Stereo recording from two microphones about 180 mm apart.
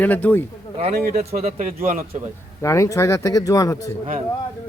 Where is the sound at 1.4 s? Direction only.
45° right (ahead or behind).